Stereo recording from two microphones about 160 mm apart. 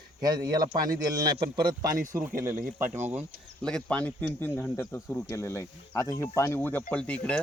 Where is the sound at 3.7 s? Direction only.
5° left (ahead or behind).